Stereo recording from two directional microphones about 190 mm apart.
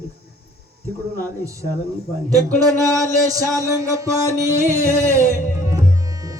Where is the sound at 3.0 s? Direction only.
15° right (ahead or behind).